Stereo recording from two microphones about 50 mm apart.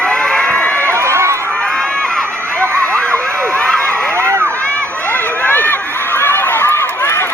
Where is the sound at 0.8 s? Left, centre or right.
Right.